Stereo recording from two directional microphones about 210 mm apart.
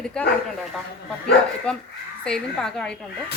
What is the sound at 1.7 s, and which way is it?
Speech, 5° left (ahead or behind).